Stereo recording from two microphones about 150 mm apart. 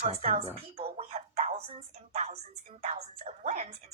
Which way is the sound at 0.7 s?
45° right (ahead or behind).